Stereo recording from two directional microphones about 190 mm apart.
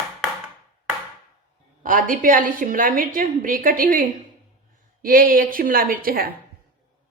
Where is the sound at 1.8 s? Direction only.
45° right (ahead or behind).